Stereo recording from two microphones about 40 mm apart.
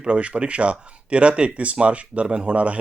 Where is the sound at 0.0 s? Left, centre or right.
Right.